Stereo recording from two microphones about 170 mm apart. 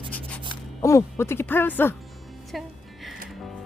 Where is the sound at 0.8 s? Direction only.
15° left (ahead or behind).